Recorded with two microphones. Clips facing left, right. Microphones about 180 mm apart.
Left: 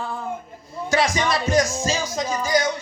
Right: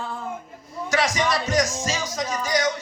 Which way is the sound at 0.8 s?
30° left (ahead or behind).